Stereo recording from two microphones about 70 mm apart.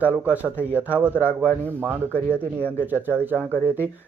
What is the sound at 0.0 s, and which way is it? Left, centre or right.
Speech, right.